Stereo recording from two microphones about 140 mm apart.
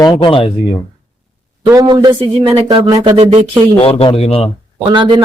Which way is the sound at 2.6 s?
30° right (ahead or behind).